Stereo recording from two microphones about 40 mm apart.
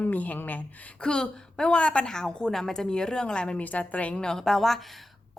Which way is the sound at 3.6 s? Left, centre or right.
Left.